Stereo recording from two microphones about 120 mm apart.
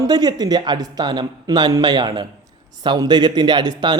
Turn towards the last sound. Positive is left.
turn(degrees=-40)  # may be behind; listen again after turning